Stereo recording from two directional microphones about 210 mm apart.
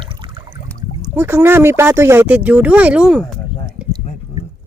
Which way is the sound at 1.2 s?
10° right (ahead or behind).